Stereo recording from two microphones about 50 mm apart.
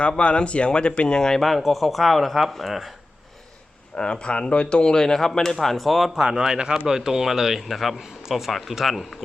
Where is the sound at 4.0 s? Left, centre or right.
Centre.